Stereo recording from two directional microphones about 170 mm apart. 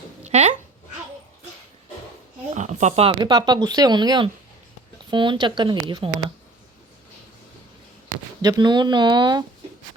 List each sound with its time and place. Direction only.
0.3 s a sound: 40° right (ahead or behind)
2.6 s speech: 45° right (ahead or behind); by 6.1 s 25° right (ahead or behind)
8.4 s speech: 25° right (ahead or behind)